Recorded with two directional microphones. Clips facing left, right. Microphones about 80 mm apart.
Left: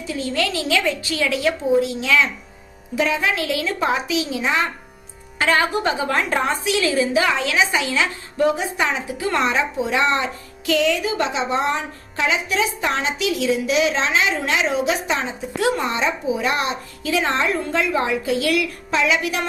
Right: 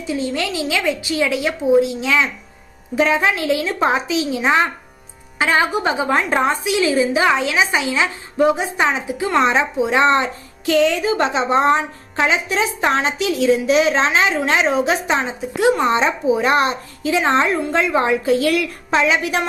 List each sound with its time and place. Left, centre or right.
0.0 s a woman's voice: right
2.9 s a woman's voice: right
17.0 s a woman's voice: right